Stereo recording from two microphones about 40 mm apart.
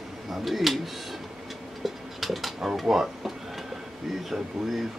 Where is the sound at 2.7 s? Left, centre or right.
Centre.